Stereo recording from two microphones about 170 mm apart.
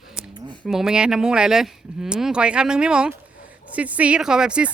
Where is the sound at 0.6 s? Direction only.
5° right (ahead or behind).